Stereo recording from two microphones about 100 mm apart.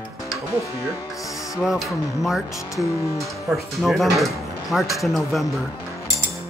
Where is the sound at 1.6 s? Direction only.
5° right (ahead or behind).